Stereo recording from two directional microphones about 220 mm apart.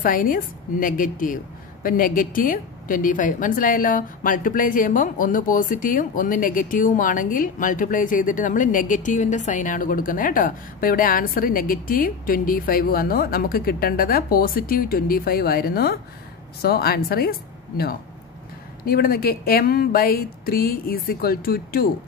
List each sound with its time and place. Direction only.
0.0 s a woman's voice: 40° left (ahead or behind)